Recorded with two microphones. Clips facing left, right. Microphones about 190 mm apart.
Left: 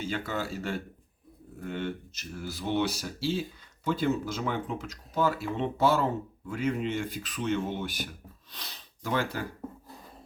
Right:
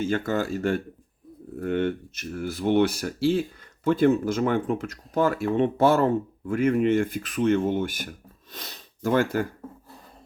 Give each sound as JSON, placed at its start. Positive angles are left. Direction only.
{"t": 0.0, "sound": "speech", "side_deg": -50}